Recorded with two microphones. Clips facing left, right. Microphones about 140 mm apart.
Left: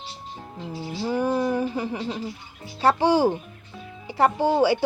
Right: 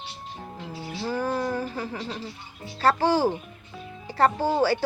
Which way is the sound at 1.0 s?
15° left (ahead or behind).